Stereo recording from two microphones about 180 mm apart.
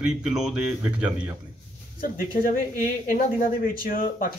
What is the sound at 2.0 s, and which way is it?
Speech, 50° left (ahead or behind).